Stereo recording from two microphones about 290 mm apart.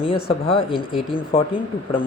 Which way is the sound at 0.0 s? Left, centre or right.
Centre.